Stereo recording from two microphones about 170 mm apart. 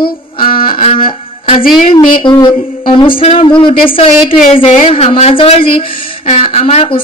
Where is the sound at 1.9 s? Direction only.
25° left (ahead or behind).